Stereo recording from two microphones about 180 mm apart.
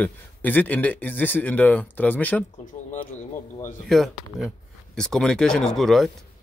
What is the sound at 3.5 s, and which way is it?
Speech, 45° left (ahead or behind).